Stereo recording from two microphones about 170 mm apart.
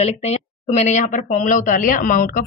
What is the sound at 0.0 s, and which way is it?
A woman's voice, 40° left (ahead or behind).